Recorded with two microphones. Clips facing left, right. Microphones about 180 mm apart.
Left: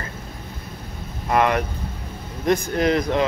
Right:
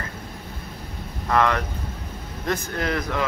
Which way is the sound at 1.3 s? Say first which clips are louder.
Left 2 dB; 15° left (ahead or behind).